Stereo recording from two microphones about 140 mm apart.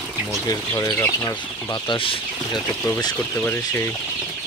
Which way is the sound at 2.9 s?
25° left (ahead or behind).